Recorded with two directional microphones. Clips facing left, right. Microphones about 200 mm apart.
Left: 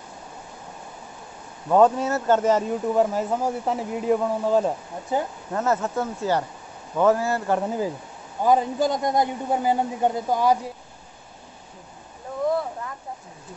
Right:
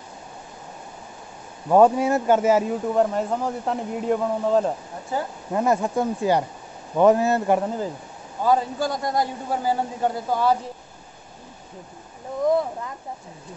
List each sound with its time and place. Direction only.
1.7 s speech: 10° right (ahead or behind)
5.1 s a man's voice: 20° left (ahead or behind)
5.5 s a man's voice: 15° right (ahead or behind)
7.6 s a man's voice: 10° left (ahead or behind)